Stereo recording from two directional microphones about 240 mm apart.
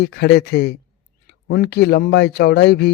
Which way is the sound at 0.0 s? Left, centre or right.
Left.